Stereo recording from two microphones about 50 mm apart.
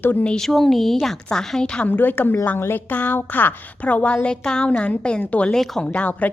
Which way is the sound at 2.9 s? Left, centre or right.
Left.